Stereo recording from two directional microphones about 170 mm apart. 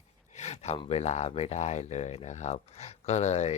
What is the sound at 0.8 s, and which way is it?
Speech, 35° left (ahead or behind).